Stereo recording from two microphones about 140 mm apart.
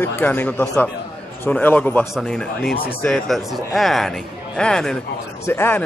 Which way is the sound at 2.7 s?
90° left.